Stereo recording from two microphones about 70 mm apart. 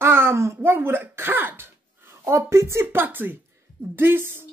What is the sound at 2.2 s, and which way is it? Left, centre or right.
A man's voice, right.